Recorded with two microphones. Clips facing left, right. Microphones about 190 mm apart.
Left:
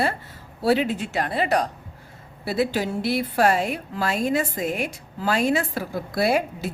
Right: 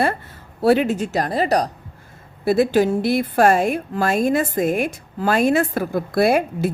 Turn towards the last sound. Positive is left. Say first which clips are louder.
# right 5 dB
turn(degrees=-50)  # may be behind; listen again after turning